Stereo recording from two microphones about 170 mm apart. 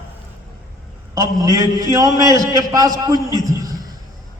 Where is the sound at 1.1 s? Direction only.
20° right (ahead or behind).